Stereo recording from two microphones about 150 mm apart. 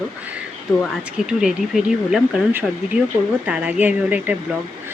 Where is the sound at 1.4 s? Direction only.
5° right (ahead or behind).